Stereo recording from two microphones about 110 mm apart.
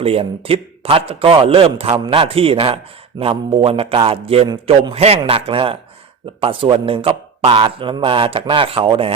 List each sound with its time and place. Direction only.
0.0 s speech: 60° right (ahead or behind)
4.4 s a man's voice: 50° right (ahead or behind)